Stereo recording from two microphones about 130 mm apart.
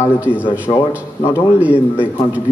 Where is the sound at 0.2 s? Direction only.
10° right (ahead or behind).